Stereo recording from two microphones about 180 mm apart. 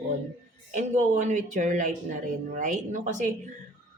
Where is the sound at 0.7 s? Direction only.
45° right (ahead or behind).